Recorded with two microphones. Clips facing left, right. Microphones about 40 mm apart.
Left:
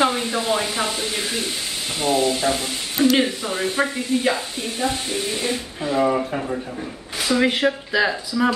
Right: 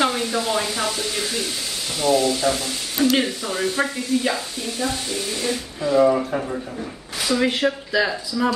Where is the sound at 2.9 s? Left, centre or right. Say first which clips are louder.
Left 2 dB; centre.